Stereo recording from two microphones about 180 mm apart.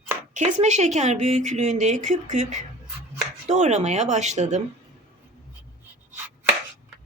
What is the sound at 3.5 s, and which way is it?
Speech, 40° right (ahead or behind).